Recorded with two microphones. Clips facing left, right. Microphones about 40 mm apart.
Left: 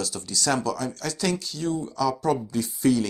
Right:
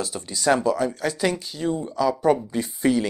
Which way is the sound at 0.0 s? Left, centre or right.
Right.